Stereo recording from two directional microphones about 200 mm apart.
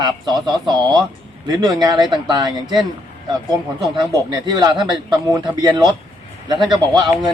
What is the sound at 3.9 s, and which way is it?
Speech, 20° right (ahead or behind).